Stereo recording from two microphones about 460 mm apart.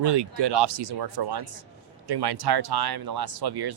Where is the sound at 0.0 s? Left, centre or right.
Right.